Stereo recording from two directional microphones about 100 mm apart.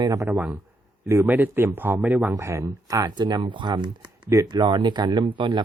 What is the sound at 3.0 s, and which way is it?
A man's voice, 45° right (ahead or behind).